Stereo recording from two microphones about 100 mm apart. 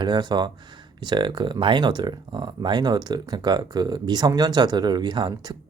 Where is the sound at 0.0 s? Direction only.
45° right (ahead or behind).